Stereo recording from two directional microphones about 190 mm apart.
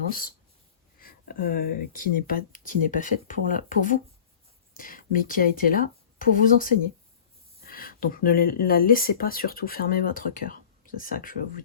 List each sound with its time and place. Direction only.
0.1 s speech: 50° left (ahead or behind)